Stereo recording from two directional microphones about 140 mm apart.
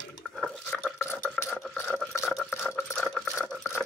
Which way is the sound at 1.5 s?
10° left (ahead or behind).